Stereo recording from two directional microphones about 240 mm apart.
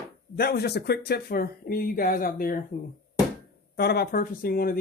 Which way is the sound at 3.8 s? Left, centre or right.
Left.